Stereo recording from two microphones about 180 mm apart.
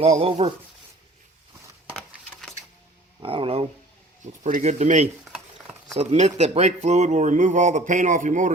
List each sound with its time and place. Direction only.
0.0 s speech: 35° right (ahead or behind)
1.9 s a sound: centre (ahead or behind)
3.2 s speech: 30° right (ahead or behind)
4.4 s speech: 40° right (ahead or behind)